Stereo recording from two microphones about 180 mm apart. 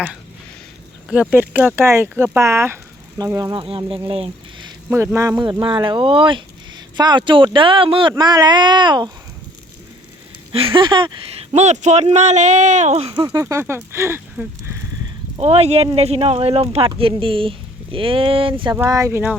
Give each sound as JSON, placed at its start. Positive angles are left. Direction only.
{"t": 1.1, "sound": "speech", "side_deg": -10}
{"t": 4.9, "sound": "speech", "side_deg": -10}
{"t": 10.5, "sound": "speech", "side_deg": -30}
{"t": 15.4, "sound": "speech", "side_deg": -35}
{"t": 18.8, "sound": "speech", "side_deg": -20}